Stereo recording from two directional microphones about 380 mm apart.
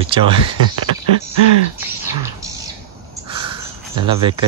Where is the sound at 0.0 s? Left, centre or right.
Centre.